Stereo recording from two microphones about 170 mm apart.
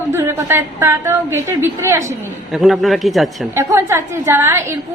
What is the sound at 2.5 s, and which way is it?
A man's voice, centre (ahead or behind).